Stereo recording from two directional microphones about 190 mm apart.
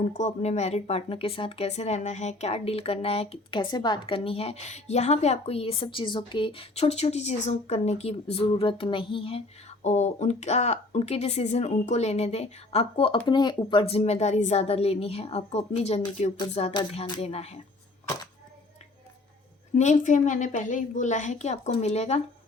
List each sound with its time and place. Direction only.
0.1 s speech: 40° left (ahead or behind)
19.7 s speech: 40° left (ahead or behind)